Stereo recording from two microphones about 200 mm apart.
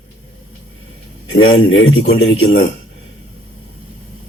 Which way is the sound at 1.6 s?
80° left.